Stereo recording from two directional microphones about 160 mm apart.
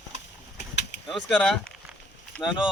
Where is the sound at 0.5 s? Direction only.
90° left.